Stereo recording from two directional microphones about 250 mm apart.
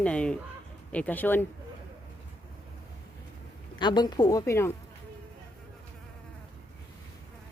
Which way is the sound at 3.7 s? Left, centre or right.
Centre.